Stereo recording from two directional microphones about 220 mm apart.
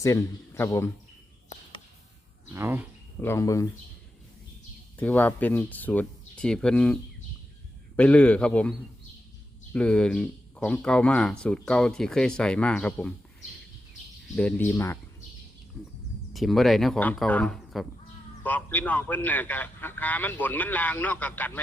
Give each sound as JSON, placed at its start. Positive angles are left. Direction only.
{"t": 0.0, "sound": "a man's voice", "side_deg": 15}
{"t": 2.5, "sound": "speech", "side_deg": -10}
{"t": 3.2, "sound": "a man's voice", "side_deg": 10}
{"t": 4.9, "sound": "a man's voice", "side_deg": 5}
{"t": 9.7, "sound": "speech", "side_deg": 5}
{"t": 14.3, "sound": "a man's voice", "side_deg": 5}
{"t": 16.3, "sound": "a man's voice", "side_deg": 0}